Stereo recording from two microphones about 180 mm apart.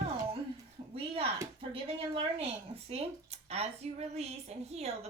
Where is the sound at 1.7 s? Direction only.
30° right (ahead or behind).